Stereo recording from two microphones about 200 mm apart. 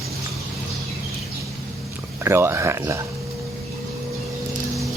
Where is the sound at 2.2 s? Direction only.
15° right (ahead or behind).